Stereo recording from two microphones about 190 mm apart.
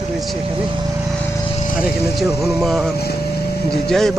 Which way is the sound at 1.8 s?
Centre (ahead or behind).